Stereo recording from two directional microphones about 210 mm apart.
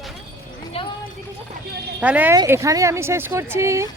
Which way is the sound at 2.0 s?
5° right (ahead or behind).